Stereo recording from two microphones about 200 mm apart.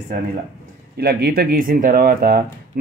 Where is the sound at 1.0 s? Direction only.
50° right (ahead or behind).